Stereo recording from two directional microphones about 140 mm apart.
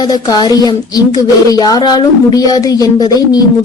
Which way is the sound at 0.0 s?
30° left (ahead or behind).